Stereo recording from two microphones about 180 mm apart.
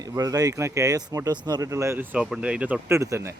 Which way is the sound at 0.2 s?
20° right (ahead or behind).